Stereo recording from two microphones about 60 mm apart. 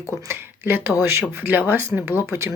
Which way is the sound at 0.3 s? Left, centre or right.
Right.